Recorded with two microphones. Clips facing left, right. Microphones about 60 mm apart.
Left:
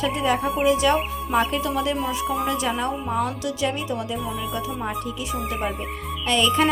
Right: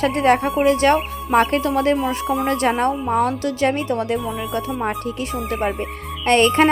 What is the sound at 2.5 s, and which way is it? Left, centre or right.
A woman's voice, right.